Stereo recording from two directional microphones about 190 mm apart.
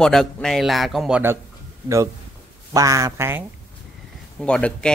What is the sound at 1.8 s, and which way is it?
Speech, 15° right (ahead or behind).